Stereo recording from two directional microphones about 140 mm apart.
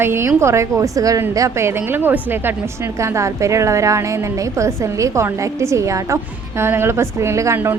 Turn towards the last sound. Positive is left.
turn(degrees=-20)  # may be behind; listen again after turning